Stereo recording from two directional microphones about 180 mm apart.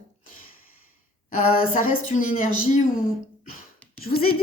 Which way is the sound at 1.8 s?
45° left (ahead or behind).